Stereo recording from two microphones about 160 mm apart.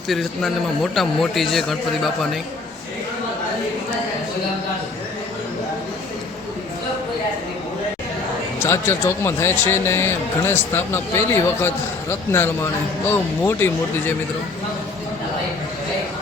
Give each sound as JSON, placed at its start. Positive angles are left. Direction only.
{"t": 0.1, "sound": "a man's voice", "side_deg": 0}
{"t": 8.5, "sound": "a man's voice", "side_deg": 15}
{"t": 13.1, "sound": "a man's voice", "side_deg": 15}